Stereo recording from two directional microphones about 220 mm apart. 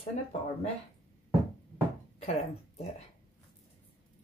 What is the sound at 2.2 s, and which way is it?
Speech, 30° left (ahead or behind).